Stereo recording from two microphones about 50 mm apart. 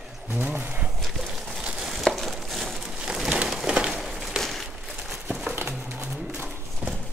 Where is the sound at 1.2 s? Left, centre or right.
Centre.